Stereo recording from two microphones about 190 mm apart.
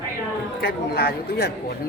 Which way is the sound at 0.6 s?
55° left (ahead or behind).